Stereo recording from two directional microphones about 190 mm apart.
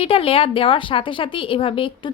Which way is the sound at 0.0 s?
30° left (ahead or behind).